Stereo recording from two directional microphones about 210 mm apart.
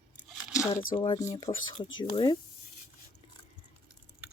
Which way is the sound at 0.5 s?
15° left (ahead or behind).